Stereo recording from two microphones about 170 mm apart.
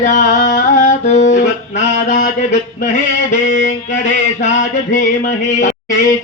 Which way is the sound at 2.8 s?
45° left (ahead or behind).